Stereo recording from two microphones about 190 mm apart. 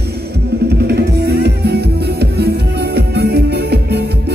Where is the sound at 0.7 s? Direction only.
60° right (ahead or behind).